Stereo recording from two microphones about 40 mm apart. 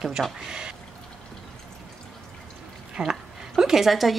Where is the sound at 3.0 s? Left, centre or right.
Centre.